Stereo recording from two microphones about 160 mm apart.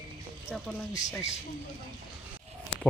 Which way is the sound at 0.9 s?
20° left (ahead or behind).